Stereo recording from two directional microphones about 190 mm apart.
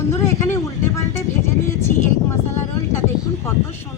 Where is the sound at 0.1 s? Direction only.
15° left (ahead or behind).